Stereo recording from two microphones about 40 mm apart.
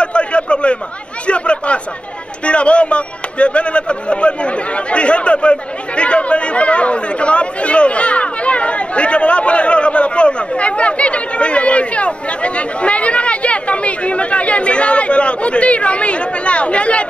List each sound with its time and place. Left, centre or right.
0.0 s chatter: left
2.4 s speech: left